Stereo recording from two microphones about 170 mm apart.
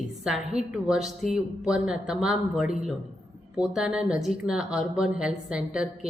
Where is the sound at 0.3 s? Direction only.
5° right (ahead or behind).